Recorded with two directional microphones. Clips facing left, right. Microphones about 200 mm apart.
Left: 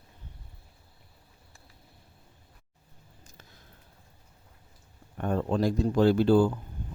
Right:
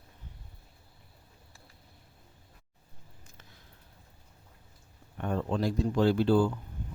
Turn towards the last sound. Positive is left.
turn(degrees=45)  # may be behind; listen again after turning